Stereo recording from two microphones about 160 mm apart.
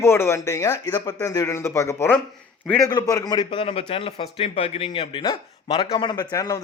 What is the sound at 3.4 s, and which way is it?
Speech, 35° left (ahead or behind).